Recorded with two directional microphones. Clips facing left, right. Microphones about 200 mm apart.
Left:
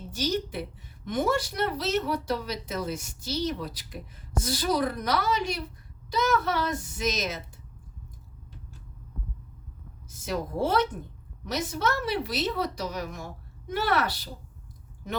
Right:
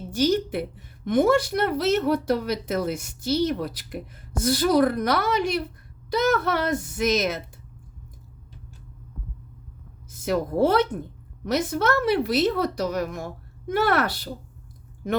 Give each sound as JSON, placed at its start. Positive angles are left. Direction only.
{"t": 0.1, "sound": "a woman's voice", "side_deg": -55}
{"t": 10.1, "sound": "a woman's voice", "side_deg": -55}